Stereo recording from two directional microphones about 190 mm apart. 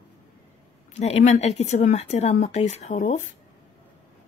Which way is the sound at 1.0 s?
35° left (ahead or behind).